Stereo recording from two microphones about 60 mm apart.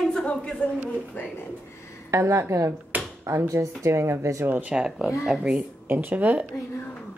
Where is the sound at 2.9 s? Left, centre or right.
Right.